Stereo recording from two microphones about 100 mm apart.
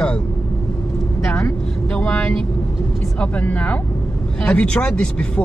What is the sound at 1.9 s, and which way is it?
Speech, 10° left (ahead or behind).